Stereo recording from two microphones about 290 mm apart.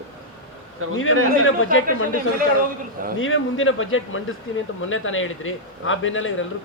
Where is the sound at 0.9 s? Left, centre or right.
Left.